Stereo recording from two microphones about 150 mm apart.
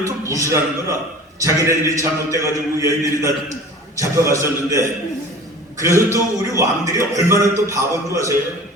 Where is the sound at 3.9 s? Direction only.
20° right (ahead or behind).